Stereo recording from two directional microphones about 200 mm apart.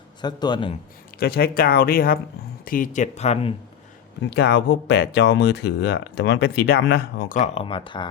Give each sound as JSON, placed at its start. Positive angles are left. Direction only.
{"t": 0.2, "sound": "a man's voice", "side_deg": 20}
{"t": 1.2, "sound": "speech", "side_deg": 50}
{"t": 4.2, "sound": "speech", "side_deg": 60}